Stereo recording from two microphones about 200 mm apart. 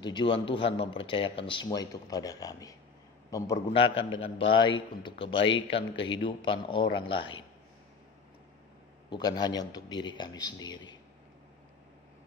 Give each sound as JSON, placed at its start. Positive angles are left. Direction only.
{"t": 0.0, "sound": "a man's voice", "side_deg": 20}
{"t": 3.5, "sound": "a man's voice", "side_deg": 25}
{"t": 9.1, "sound": "a man's voice", "side_deg": 20}